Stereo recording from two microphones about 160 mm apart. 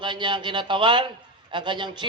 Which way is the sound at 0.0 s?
30° right (ahead or behind).